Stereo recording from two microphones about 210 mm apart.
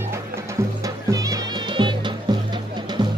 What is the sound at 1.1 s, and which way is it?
Music, 15° right (ahead or behind).